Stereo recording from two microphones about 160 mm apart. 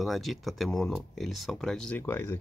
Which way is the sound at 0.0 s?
Centre (ahead or behind).